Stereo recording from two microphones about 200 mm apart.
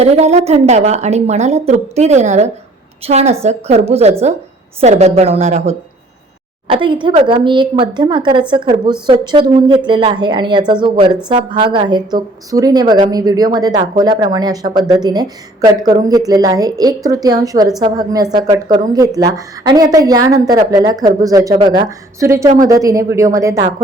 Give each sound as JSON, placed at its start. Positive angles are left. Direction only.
{"t": 0.0, "sound": "a woman's voice", "side_deg": -35}